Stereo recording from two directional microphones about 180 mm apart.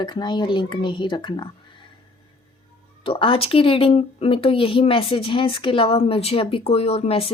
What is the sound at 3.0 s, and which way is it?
Speech, 30° left (ahead or behind).